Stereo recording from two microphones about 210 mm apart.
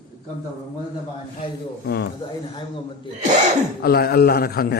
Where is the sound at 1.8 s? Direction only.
50° left (ahead or behind).